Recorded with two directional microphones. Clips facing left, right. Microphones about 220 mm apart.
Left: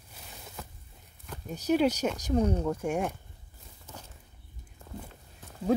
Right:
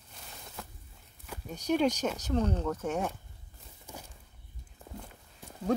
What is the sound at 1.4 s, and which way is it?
Speech, 5° left (ahead or behind).